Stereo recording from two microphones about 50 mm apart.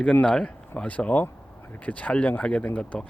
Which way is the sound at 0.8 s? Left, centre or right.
Left.